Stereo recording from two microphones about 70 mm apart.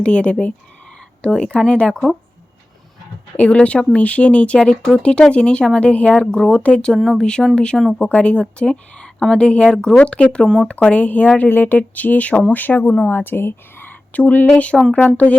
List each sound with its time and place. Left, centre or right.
0.0 s speech: centre
3.3 s speech: centre
6.1 s speech: centre
6.5 s speech: centre
10.8 s speech: centre
14.7 s speech: centre